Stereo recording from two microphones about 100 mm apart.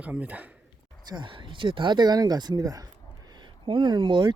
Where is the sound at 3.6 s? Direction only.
55° right (ahead or behind).